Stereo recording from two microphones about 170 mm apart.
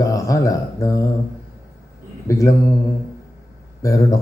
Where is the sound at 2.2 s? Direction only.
20° left (ahead or behind).